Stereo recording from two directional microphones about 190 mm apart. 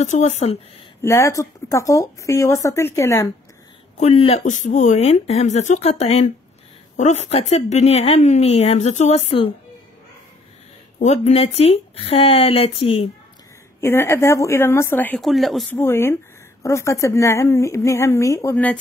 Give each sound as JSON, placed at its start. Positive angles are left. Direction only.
{"t": 0.0, "sound": "a woman's voice", "side_deg": 40}
{"t": 1.0, "sound": "speech", "side_deg": 15}
{"t": 4.0, "sound": "a woman's voice", "side_deg": 30}
{"t": 11.0, "sound": "a woman's voice", "side_deg": 35}
{"t": 13.7, "sound": "speech", "side_deg": 15}
{"t": 15.8, "sound": "speech", "side_deg": 10}